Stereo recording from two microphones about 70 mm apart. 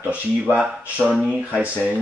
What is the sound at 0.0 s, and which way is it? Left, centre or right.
Speech, right.